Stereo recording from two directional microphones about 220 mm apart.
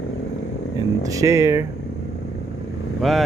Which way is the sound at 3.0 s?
Centre (ahead or behind).